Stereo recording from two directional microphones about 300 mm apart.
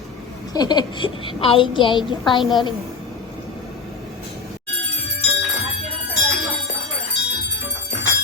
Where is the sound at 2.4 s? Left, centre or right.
Centre.